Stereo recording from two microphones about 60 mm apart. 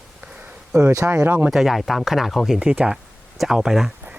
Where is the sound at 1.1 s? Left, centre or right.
Right.